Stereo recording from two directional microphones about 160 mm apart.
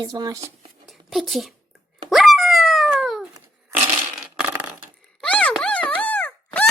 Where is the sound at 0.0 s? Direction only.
25° right (ahead or behind).